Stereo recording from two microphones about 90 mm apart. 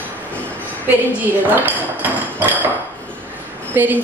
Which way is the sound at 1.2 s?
20° right (ahead or behind).